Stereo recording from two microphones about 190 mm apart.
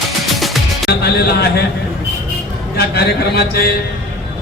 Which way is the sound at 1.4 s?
60° left (ahead or behind).